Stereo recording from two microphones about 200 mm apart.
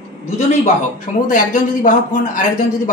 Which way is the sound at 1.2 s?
40° left (ahead or behind).